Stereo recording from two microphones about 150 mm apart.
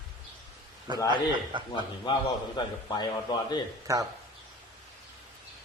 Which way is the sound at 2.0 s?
30° left (ahead or behind).